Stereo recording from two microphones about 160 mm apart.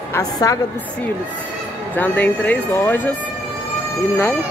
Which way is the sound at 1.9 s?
10° left (ahead or behind).